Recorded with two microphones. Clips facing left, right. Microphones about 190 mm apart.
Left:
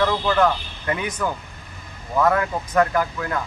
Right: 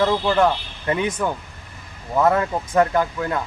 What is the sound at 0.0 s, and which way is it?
Speech, 25° right (ahead or behind).